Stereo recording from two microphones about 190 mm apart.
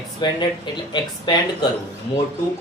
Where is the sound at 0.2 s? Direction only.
25° left (ahead or behind).